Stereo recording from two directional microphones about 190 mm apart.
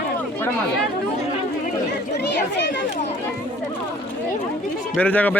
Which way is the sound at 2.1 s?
65° left (ahead or behind).